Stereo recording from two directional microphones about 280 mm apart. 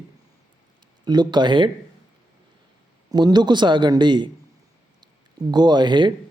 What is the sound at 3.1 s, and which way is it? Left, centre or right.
A man's voice, centre.